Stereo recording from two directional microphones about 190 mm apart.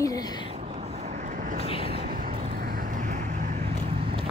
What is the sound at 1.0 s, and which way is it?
Vehicle, 40° right (ahead or behind).